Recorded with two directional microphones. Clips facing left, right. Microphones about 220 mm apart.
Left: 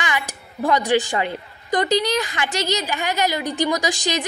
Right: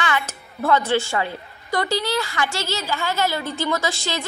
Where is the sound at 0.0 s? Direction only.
15° left (ahead or behind).